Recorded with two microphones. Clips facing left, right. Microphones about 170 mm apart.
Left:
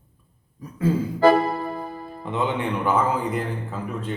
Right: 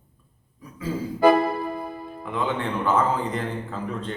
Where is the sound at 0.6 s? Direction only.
45° left (ahead or behind).